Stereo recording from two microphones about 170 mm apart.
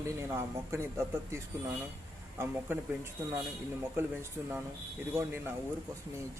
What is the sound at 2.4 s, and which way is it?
A man's voice, 15° right (ahead or behind).